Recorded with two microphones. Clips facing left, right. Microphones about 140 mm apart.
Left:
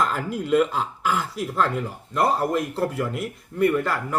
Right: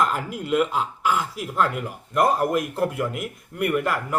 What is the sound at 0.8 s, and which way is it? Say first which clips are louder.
Speech: right 1 dB; 40° left (ahead or behind).